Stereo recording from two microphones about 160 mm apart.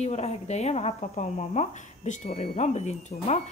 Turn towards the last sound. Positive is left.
turn(degrees=45)  # may be behind; listen again after turning